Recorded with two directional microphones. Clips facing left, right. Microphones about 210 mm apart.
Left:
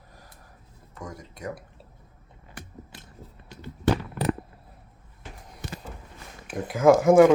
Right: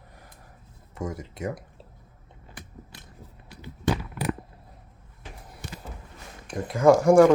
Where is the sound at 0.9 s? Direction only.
25° right (ahead or behind).